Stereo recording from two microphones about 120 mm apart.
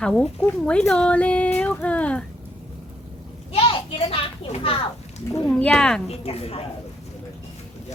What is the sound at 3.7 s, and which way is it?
A child's voice, 50° left (ahead or behind).